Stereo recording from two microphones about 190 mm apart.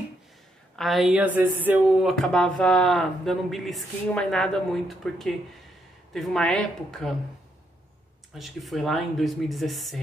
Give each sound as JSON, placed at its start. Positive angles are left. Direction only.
{"t": 0.7, "sound": "speech", "side_deg": 0}
{"t": 8.4, "sound": "speech", "side_deg": 0}